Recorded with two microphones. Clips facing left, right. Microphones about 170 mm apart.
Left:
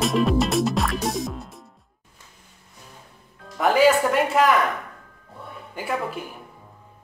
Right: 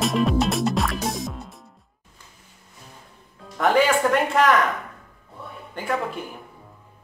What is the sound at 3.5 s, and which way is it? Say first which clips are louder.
Music: left 2 dB; 5° left (ahead or behind).